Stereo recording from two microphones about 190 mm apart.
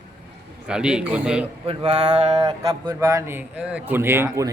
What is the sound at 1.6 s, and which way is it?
Mantra, 30° right (ahead or behind).